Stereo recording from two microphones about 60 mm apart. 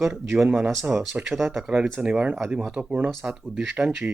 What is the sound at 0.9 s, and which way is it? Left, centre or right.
Speech, right.